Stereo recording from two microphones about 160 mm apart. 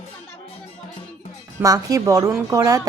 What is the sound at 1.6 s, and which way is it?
Speech, 20° right (ahead or behind).